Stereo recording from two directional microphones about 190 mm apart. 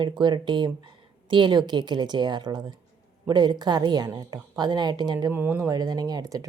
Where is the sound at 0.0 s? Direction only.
25° right (ahead or behind).